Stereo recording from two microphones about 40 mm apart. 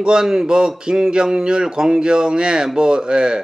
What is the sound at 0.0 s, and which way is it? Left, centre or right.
Speech, centre.